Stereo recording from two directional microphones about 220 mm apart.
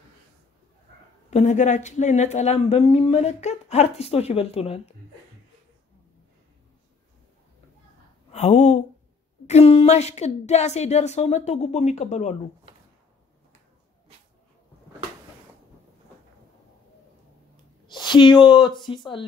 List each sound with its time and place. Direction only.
1.3 s speech: 35° left (ahead or behind)
8.3 s a woman's voice: 30° left (ahead or behind)
17.8 s speech: 20° left (ahead or behind)